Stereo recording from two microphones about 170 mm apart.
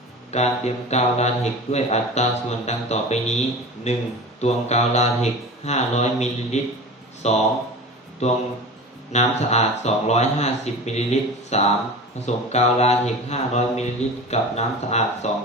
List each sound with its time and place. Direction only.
0.3 s speech: 40° left (ahead or behind)